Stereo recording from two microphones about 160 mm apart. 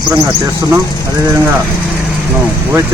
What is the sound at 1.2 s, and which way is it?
Speech, 15° right (ahead or behind).